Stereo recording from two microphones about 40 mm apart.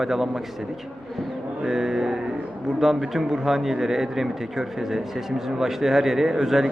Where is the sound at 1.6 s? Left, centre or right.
Centre.